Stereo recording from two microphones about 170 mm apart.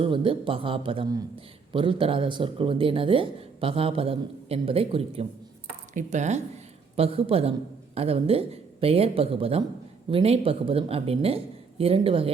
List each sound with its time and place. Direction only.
0.0 s speech: 30° right (ahead or behind)
5.9 s speech: 45° right (ahead or behind)